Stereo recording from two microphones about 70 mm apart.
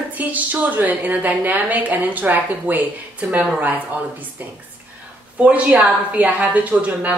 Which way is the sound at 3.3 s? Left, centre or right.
Centre.